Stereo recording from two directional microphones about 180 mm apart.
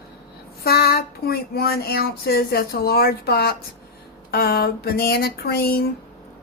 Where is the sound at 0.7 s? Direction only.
60° left (ahead or behind).